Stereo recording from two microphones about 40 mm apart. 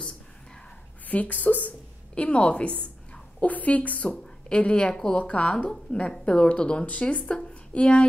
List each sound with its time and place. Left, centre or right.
1.0 s speech: left
2.1 s a woman's voice: left
6.9 s a woman's voice: left